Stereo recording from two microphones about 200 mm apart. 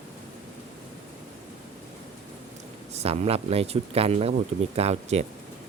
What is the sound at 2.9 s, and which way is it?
Speech, 30° right (ahead or behind).